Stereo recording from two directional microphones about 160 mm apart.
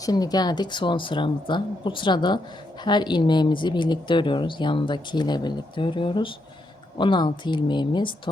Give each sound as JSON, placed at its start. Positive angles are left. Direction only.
{"t": 0.0, "sound": "speech", "side_deg": 25}